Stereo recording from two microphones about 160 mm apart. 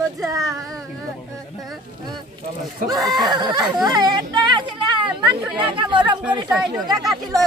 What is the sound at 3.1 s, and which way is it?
Speech, 25° right (ahead or behind).